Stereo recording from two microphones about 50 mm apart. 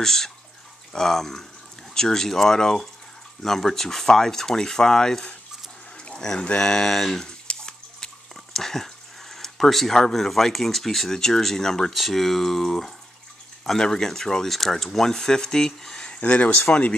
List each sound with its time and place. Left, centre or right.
0.0 s speech: centre
7.2 s bathtub: centre
8.5 s speech: centre; by 16.9 s left